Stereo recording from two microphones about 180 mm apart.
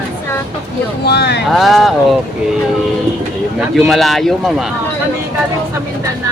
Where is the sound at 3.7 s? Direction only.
Centre (ahead or behind).